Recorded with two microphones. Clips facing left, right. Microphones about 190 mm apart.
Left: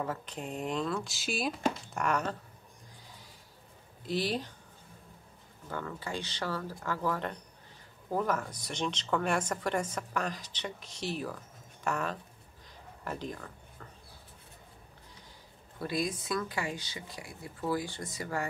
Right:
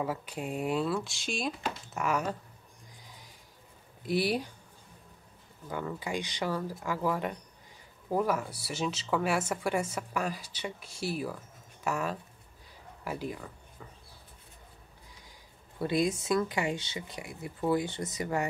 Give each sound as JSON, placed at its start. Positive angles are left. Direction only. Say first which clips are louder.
{"t": 0.0, "sound": "speech", "louder": "right 3 dB", "side_deg": -10}
{"t": 2.0, "sound": "speech", "louder": "right 5 dB", "side_deg": -5}
{"t": 4.0, "sound": "speech", "louder": "right 3 dB", "side_deg": -10}
{"t": 5.7, "sound": "speech", "louder": "right 3 dB", "side_deg": -15}
{"t": 15.8, "sound": "speech", "louder": "right 5 dB", "side_deg": -25}